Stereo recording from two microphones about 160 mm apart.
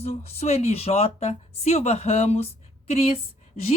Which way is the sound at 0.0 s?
40° left (ahead or behind).